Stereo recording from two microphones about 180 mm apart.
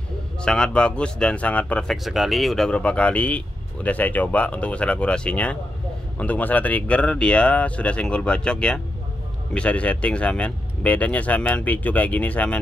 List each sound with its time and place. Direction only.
0.4 s speech: 5° left (ahead or behind)